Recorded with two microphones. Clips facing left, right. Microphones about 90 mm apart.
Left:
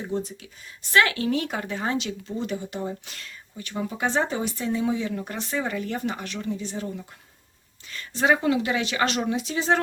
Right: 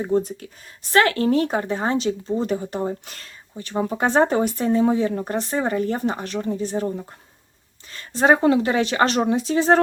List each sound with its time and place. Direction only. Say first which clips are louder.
0.0 s a woman's voice: right 8 dB; 45° right (ahead or behind)